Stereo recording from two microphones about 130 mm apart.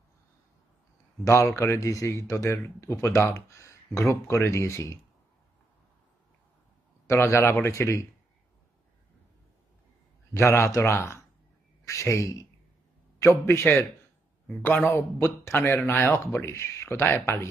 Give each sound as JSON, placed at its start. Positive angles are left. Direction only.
{"t": 1.2, "sound": "speech", "side_deg": 20}
{"t": 7.1, "sound": "speech", "side_deg": 20}
{"t": 10.3, "sound": "a man's voice", "side_deg": 20}